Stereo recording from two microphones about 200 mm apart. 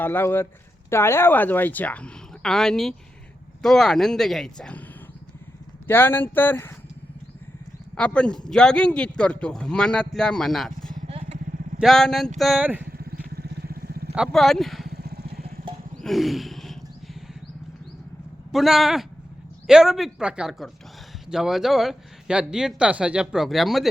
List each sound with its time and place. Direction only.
0.0 s a woman's voice: 10° left (ahead or behind)
5.9 s a woman's voice: 10° left (ahead or behind)
7.9 s speech: 5° left (ahead or behind)
11.0 s vehicle: 30° right (ahead or behind)
11.8 s speech: centre (ahead or behind)
12.9 s vehicle: 50° right (ahead or behind)
14.2 s speech: centre (ahead or behind)
14.8 s vehicle: 50° right (ahead or behind)
16.0 s a sound: centre (ahead or behind)
18.5 s speech: centre (ahead or behind)